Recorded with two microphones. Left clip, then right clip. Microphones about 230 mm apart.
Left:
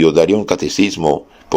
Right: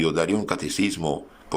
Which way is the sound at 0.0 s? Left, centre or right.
Centre.